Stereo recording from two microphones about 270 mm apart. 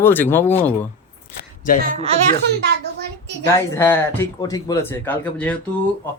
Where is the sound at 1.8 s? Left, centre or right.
Right.